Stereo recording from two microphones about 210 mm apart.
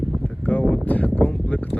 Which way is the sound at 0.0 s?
5° left (ahead or behind).